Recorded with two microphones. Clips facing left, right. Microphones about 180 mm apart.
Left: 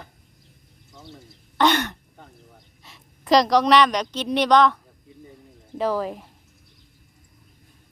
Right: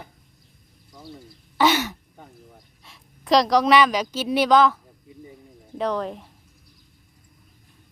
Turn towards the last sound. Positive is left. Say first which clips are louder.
# left 1 dB
turn(degrees=5)  # may be behind; listen again after turning